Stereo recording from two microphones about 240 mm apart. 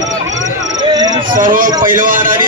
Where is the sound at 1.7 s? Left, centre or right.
Centre.